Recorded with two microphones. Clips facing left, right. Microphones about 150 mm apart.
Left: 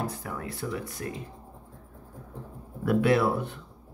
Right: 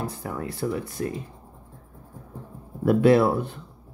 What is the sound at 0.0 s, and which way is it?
Speech, 30° right (ahead or behind).